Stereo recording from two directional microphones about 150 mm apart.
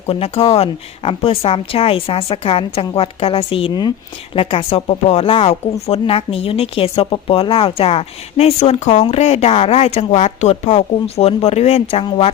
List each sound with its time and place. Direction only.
0.1 s speech: 40° left (ahead or behind)
4.4 s speech: 40° left (ahead or behind)